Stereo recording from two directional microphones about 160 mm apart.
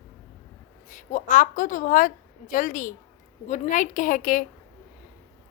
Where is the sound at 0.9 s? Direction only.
55° left (ahead or behind).